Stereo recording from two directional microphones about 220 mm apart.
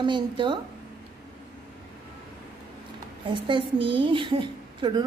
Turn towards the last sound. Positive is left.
turn(degrees=-20)  # may be behind; listen again after turning